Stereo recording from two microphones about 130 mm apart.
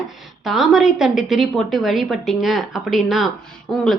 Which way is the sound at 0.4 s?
Centre (ahead or behind).